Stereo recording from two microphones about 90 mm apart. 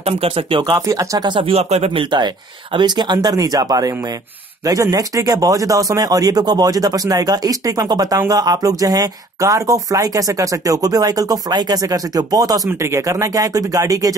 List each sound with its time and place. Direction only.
0.2 s speech: 90° right
0.7 s speech: 40° right (ahead or behind)
1.2 s speech: 75° right (ahead or behind); by 12.6 s 45° right (ahead or behind)
12.6 s speech: 30° right (ahead or behind)